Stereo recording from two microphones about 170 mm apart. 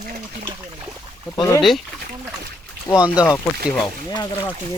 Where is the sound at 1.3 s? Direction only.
20° left (ahead or behind).